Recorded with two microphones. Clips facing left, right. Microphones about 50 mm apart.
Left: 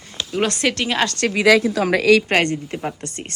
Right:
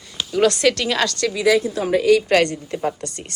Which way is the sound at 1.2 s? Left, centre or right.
Left.